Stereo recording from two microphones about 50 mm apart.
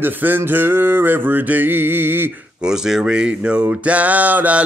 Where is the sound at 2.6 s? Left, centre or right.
Centre.